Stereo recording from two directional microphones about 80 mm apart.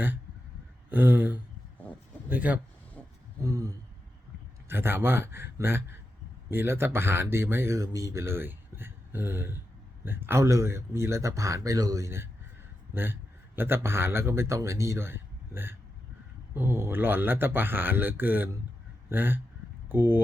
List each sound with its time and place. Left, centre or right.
0.9 s speech: right
3.4 s speech: right
4.7 s a man's voice: right